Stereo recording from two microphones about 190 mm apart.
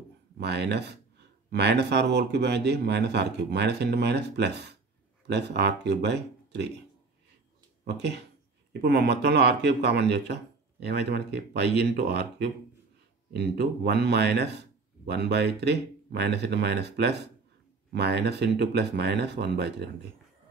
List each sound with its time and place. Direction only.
0.4 s speech: 60° right (ahead or behind)
7.8 s speech: 60° right (ahead or behind)